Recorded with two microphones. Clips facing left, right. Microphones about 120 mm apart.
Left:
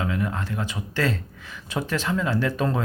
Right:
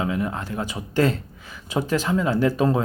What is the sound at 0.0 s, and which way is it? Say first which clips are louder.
Speech: right 2 dB; 20° right (ahead or behind).